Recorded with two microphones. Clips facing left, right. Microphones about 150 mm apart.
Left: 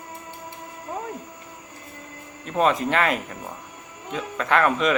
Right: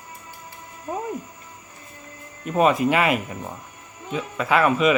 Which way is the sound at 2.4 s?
10° right (ahead or behind).